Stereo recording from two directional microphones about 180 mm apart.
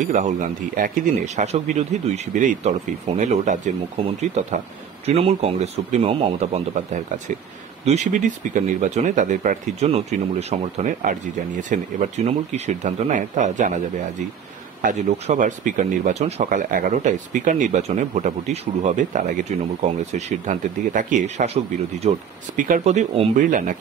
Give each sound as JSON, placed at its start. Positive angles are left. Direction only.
{"t": 0.0, "sound": "speech", "side_deg": -40}
{"t": 7.8, "sound": "speech", "side_deg": -40}
{"t": 14.8, "sound": "speech", "side_deg": -45}